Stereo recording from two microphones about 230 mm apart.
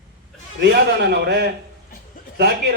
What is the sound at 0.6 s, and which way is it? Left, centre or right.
A man's voice, right.